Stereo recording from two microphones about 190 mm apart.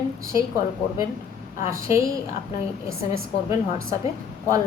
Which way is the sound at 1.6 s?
15° right (ahead or behind).